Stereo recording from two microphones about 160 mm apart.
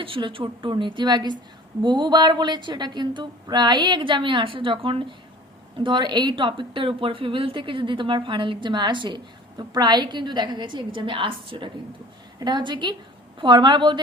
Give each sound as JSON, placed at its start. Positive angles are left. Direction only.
{"t": 0.0, "sound": "a woman's voice", "side_deg": -30}